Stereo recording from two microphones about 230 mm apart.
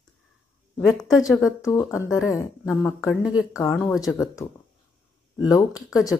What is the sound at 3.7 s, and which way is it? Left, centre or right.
Speech, centre.